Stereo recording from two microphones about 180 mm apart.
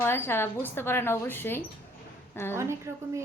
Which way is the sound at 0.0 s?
15° left (ahead or behind).